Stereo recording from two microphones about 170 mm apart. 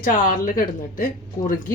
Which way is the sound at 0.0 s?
55° left (ahead or behind).